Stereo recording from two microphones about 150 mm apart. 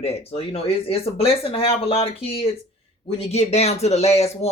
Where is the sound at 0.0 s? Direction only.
40° left (ahead or behind).